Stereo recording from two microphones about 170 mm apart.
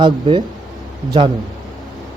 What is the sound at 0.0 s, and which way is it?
Speech, 25° right (ahead or behind).